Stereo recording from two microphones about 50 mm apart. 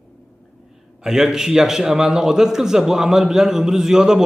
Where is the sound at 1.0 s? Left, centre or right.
Centre.